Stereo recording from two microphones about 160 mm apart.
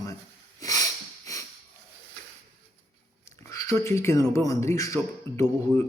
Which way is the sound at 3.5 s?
20° left (ahead or behind).